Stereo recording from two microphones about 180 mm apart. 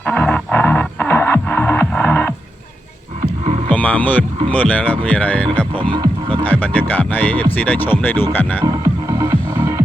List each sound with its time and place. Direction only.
0.0 s music: 5° left (ahead or behind)
3.7 s music: 10° left (ahead or behind)
4.4 s speech: 10° left (ahead or behind)
5.9 s music: 30° right (ahead or behind)
6.4 s speech: 10° left (ahead or behind)
8.6 s music: 20° right (ahead or behind)